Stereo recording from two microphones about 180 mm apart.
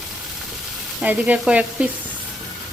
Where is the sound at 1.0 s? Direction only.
10° right (ahead or behind).